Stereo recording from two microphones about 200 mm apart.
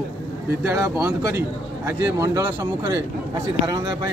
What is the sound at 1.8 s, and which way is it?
A man's voice, 10° right (ahead or behind).